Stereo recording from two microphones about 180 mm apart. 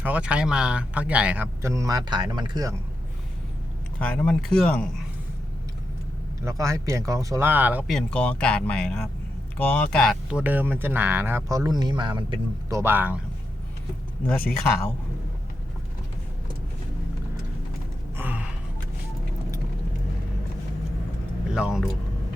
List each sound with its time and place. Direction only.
0.0 s speech: 5° right (ahead or behind)
4.0 s speech: 5° left (ahead or behind)
6.4 s speech: 20° right (ahead or behind)
7.9 s speech: 5° left (ahead or behind); by 13.1 s 10° right (ahead or behind)
18.2 s gasp: 10° right (ahead or behind)
21.5 s speech: 5° right (ahead or behind)